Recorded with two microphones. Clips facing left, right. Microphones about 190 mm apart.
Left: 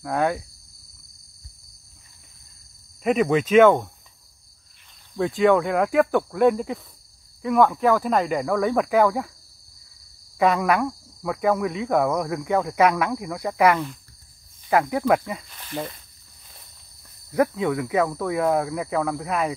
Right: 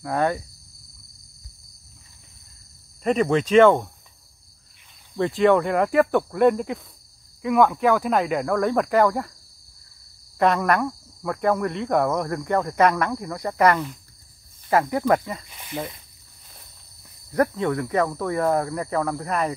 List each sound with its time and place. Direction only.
0.0 s speech: 5° left (ahead or behind)
3.0 s speech: 5° left (ahead or behind)
5.1 s speech: centre (ahead or behind)
10.4 s speech: 5° left (ahead or behind)
15.5 s speech: 10° right (ahead or behind)
17.3 s speech: 5° left (ahead or behind)